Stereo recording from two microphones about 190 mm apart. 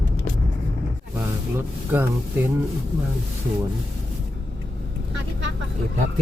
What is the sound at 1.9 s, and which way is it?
Speech, 10° right (ahead or behind).